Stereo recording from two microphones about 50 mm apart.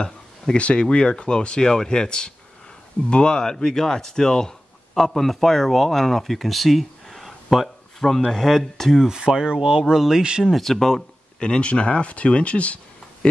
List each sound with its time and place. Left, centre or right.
0.6 s speech: left; by 9.0 s centre
9.0 s speech: centre
10.4 s speech: centre
11.3 s speech: left